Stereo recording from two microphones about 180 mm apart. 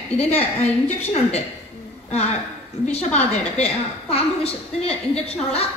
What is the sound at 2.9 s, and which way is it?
A woman's voice, 35° left (ahead or behind).